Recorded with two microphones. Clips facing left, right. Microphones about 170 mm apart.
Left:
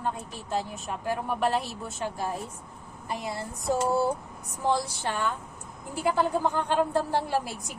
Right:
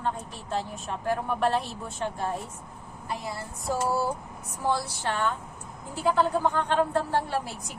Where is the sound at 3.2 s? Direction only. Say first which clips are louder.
Left 5 dB; 20° left (ahead or behind).